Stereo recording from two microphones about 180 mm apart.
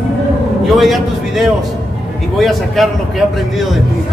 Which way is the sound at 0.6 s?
Centre (ahead or behind).